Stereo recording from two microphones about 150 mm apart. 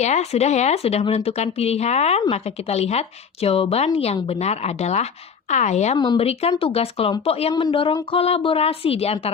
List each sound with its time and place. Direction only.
0.0 s a woman's voice: 50° left (ahead or behind)
6.0 s speech: 30° left (ahead or behind)
6.6 s a woman's voice: 40° left (ahead or behind)